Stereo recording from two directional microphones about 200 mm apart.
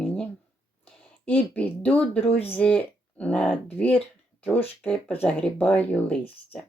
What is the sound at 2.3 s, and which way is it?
Speech, 30° left (ahead or behind).